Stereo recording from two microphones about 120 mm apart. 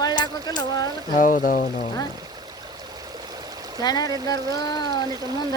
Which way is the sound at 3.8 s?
35° left (ahead or behind).